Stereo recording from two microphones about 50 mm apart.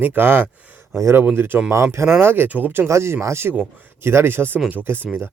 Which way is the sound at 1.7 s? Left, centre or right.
Right.